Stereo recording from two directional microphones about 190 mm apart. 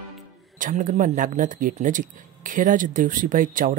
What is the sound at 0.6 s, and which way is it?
Speech, 45° right (ahead or behind).